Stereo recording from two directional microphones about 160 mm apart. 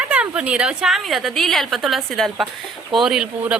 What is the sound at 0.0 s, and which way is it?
A woman's voice, 5° right (ahead or behind).